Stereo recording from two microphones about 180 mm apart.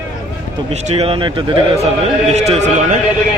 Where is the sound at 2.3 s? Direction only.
40° right (ahead or behind).